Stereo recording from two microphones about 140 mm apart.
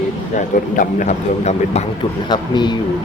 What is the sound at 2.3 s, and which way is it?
Speech, 30° left (ahead or behind).